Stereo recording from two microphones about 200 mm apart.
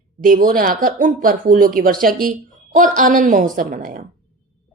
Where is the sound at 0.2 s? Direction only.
45° right (ahead or behind).